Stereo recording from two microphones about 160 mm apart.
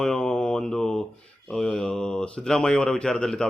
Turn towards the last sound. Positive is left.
turn(degrees=5)  # may be behind; listen again after turning